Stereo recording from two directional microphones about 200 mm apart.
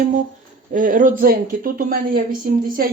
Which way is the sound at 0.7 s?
40° right (ahead or behind).